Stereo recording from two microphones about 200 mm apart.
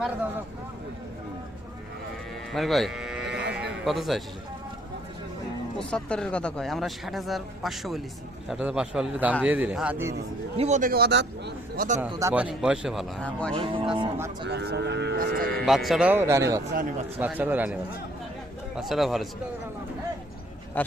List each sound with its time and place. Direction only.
2.5 s livestock: centre (ahead or behind)
3.5 s sheep: 5° right (ahead or behind)
5.8 s speech: 5° left (ahead or behind); by 10.2 s 10° right (ahead or behind)
10.6 s a man's voice: 35° right (ahead or behind); by 11.9 s 60° right (ahead or behind)
11.9 s speech: 15° right (ahead or behind); by 13.5 s 5° left (ahead or behind)
13.5 s speech: 25° right (ahead or behind)
14.4 s speech: 55° right (ahead or behind)
15.6 s speech: centre (ahead or behind)
18.8 s speech: centre (ahead or behind)
20.8 s speech: 10° left (ahead or behind)